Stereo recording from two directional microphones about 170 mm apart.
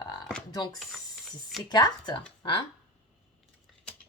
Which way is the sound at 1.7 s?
25° left (ahead or behind).